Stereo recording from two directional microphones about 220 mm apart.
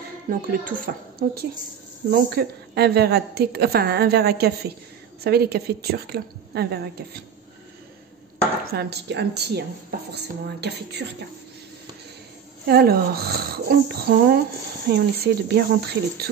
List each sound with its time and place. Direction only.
0.3 s a woman's voice: 40° right (ahead or behind)
8.7 s a woman's voice: 50° right (ahead or behind)
12.6 s a woman's voice: 45° right (ahead or behind)